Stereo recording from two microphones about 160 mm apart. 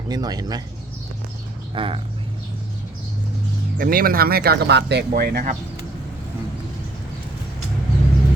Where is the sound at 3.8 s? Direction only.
65° right (ahead or behind).